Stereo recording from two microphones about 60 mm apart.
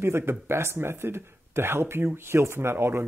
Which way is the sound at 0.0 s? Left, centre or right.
Right.